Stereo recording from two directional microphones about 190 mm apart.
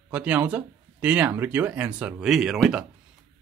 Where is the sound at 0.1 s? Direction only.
5° right (ahead or behind).